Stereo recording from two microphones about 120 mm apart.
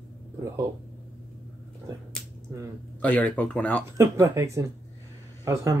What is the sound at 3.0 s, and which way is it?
Speech, 15° left (ahead or behind).